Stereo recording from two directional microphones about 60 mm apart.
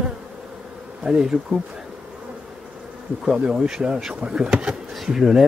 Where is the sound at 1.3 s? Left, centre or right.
Right.